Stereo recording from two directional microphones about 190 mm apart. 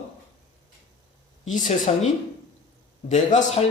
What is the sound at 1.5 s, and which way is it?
Speech, 40° left (ahead or behind).